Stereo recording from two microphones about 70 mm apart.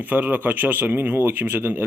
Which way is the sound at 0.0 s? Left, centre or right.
Right.